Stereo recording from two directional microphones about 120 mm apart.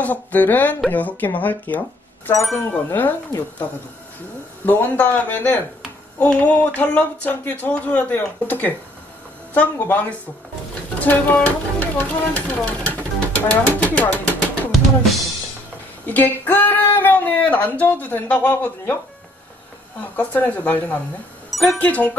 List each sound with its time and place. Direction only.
0.0 s speech: 15° left (ahead or behind)
2.3 s speech: centre (ahead or behind)
2.9 s speech: 15° left (ahead or behind)
4.6 s speech: 15° left (ahead or behind)
11.1 s speech: 10° left (ahead or behind)
16.1 s speech: 15° left (ahead or behind)
20.0 s speech: 15° left (ahead or behind)
21.5 s music: centre (ahead or behind)
21.7 s speech: 10° left (ahead or behind)